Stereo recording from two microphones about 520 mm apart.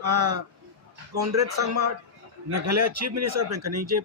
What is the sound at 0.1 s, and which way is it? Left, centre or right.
Speech, right.